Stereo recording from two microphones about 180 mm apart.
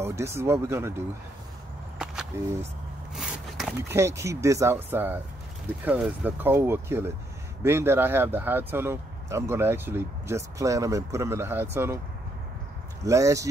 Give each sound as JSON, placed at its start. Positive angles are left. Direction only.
{"t": 0.0, "sound": "speech", "side_deg": -15}
{"t": 3.2, "sound": "a sound", "side_deg": 0}
{"t": 3.9, "sound": "speech", "side_deg": -15}
{"t": 13.0, "sound": "speech", "side_deg": -15}